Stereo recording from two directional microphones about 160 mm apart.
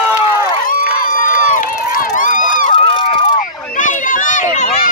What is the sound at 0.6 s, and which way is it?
Run, 60° left (ahead or behind).